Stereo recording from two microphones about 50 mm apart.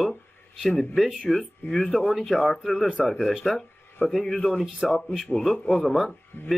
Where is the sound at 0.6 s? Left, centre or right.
Centre.